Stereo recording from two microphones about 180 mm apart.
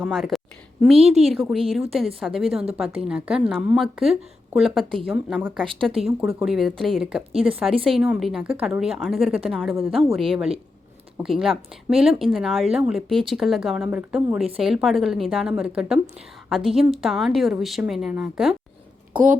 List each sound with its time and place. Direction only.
0.1 s a sound: centre (ahead or behind)
0.9 s a woman's voice: 35° right (ahead or behind)
1.2 s a woman's voice: centre (ahead or behind)
11.2 s a woman's voice: centre (ahead or behind)
19.1 s speech: 45° right (ahead or behind)